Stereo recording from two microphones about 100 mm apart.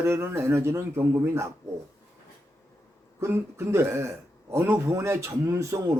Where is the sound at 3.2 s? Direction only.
25° right (ahead or behind).